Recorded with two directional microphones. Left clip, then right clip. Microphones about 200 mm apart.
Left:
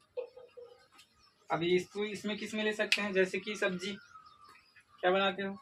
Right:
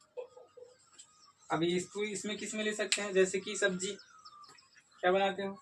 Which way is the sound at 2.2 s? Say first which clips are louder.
Left 2 dB; 10° left (ahead or behind).